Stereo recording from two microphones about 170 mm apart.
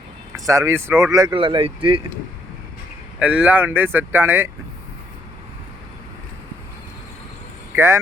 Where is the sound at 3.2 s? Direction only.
10° right (ahead or behind).